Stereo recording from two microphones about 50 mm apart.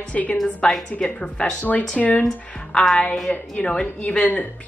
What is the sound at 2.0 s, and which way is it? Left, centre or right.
Speech, left.